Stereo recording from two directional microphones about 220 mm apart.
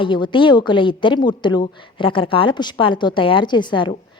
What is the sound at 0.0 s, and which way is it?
A woman's voice, 20° left (ahead or behind).